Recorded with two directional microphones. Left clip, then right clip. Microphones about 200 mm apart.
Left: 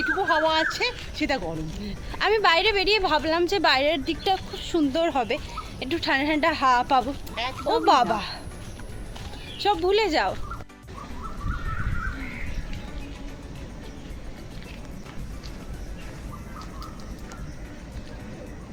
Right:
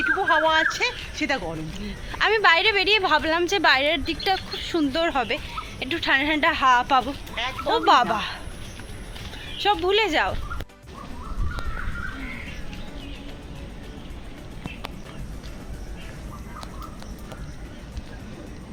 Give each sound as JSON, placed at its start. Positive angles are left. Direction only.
{"t": 0.2, "sound": "speech", "side_deg": 5}
{"t": 9.6, "sound": "speech", "side_deg": 0}